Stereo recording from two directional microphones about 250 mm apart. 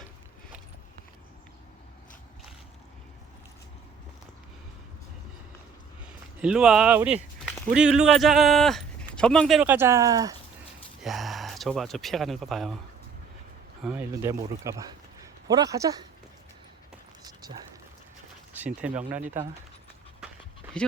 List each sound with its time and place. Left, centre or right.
6.4 s speech: centre
11.0 s speech: centre
13.8 s a man's voice: centre
17.2 s a sound: centre
18.6 s speech: centre
20.2 s dog: centre